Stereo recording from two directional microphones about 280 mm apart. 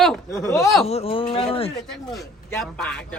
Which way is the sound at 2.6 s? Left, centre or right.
Centre.